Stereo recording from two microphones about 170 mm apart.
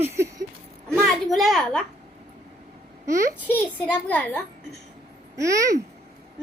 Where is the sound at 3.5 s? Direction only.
10° left (ahead or behind).